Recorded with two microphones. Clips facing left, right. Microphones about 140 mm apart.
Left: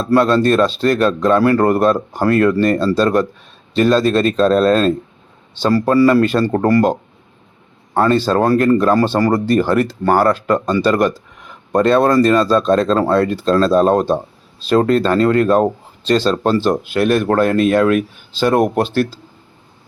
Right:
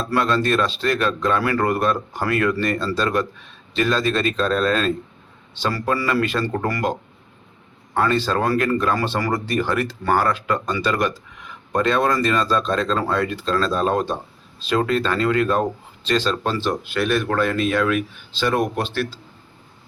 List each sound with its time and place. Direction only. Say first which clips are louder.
0.0 s speech: left 7 dB; 35° left (ahead or behind)
7.9 s speech: left 6 dB; 35° left (ahead or behind)